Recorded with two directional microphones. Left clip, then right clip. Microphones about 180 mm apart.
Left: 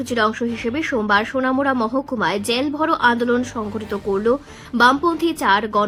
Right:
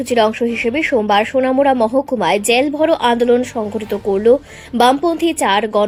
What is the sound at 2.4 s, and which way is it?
Speech, 35° left (ahead or behind).